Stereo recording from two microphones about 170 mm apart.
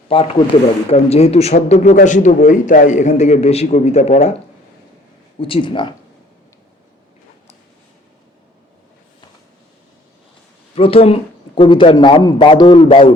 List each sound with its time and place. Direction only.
0.1 s a man's voice: 35° left (ahead or behind)
5.4 s a man's voice: 30° left (ahead or behind)
10.8 s a man's voice: 35° left (ahead or behind)